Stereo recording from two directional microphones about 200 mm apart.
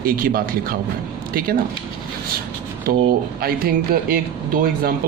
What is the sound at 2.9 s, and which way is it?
Speech, 45° right (ahead or behind).